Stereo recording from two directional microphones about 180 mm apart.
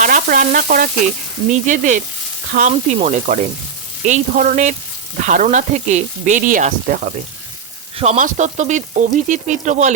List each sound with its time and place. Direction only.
0.0 s speech: 50° right (ahead or behind)
7.9 s frying: 40° right (ahead or behind)